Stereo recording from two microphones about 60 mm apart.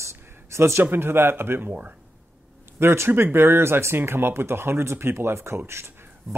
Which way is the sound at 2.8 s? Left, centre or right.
Right.